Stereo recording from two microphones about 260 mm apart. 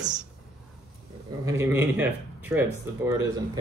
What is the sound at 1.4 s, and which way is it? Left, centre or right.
Speech, centre.